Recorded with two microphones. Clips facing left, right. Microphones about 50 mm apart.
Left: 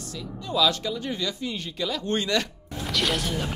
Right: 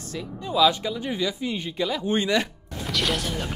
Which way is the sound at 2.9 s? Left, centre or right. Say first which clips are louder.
Even; centre.